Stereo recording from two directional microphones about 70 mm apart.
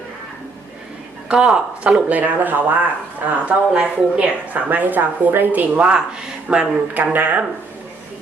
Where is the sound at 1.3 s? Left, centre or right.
Centre.